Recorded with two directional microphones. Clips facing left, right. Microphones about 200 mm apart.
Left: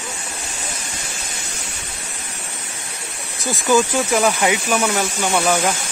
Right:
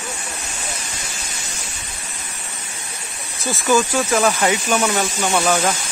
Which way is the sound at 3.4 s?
15° left (ahead or behind).